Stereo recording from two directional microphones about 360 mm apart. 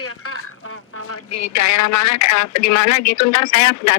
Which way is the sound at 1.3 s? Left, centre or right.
Left.